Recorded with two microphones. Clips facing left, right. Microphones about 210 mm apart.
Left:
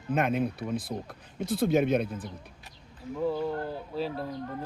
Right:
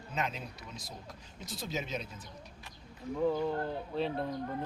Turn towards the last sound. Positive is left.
turn(degrees=5)  # may be behind; listen again after turning